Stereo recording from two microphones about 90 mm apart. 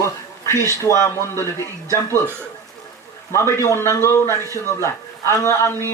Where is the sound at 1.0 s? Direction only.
30° left (ahead or behind).